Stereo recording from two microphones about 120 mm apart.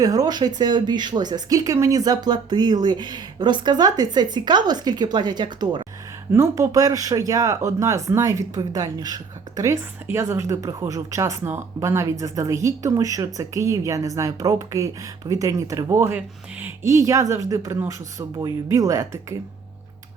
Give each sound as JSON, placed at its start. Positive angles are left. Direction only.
{"t": 0.0, "sound": "speech", "side_deg": -30}
{"t": 6.3, "sound": "speech", "side_deg": -25}